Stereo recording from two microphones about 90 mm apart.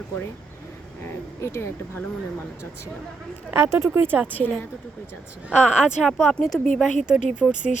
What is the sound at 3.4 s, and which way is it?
Speech, 25° right (ahead or behind).